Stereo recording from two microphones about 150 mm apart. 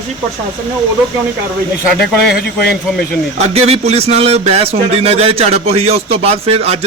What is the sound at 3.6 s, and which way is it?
Speech, 45° right (ahead or behind).